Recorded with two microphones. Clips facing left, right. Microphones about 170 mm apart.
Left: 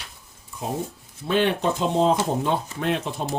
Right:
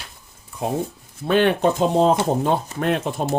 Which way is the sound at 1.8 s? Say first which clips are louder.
Right 2 dB; 45° right (ahead or behind).